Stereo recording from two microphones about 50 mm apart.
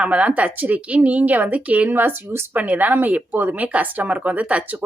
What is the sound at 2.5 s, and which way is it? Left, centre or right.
Speech, right.